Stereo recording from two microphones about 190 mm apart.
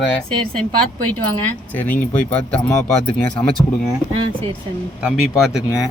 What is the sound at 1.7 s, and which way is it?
Speech, 10° left (ahead or behind).